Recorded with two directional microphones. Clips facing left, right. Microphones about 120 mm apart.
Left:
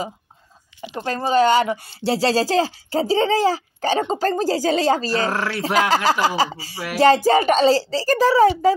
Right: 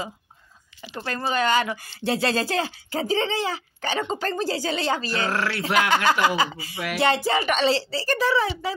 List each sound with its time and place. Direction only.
0.7 s speech: 15° left (ahead or behind)
1.3 s speech: 30° left (ahead or behind)